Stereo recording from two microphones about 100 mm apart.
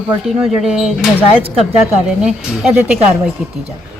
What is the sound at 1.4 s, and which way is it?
Speech, 75° right (ahead or behind).